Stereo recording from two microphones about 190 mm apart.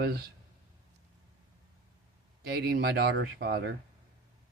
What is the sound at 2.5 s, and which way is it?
Speech, 55° right (ahead or behind).